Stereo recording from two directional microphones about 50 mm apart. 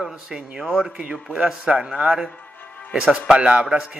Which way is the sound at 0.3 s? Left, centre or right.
Centre.